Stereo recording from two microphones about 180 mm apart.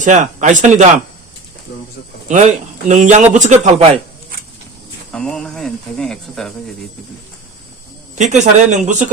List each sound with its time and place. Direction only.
0.0 s a man's voice: 40° right (ahead or behind)
2.3 s a man's voice: 40° right (ahead or behind)
5.1 s speech: 5° left (ahead or behind)
8.1 s a man's voice: 40° right (ahead or behind)